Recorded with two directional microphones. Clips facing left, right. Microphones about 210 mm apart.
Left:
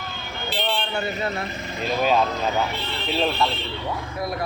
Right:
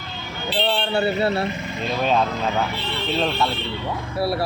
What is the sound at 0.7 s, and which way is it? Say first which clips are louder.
Speech: right 7 dB; 35° right (ahead or behind).